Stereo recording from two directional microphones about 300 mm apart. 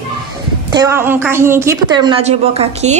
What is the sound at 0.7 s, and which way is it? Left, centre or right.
A woman's voice, centre.